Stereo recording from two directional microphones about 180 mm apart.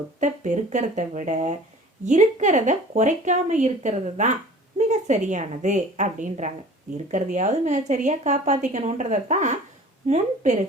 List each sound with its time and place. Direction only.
0.2 s a woman's voice: 45° right (ahead or behind)